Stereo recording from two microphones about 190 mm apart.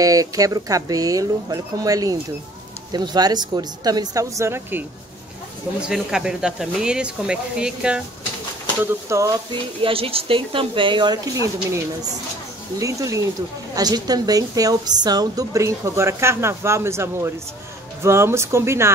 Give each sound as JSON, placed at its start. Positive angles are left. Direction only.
{"t": 0.0, "sound": "a woman's voice", "side_deg": -20}
{"t": 9.1, "sound": "a woman's voice", "side_deg": -15}
{"t": 9.8, "sound": "a woman's voice", "side_deg": -30}